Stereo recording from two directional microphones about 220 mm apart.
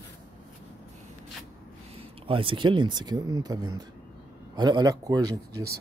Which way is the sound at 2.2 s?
25° right (ahead or behind).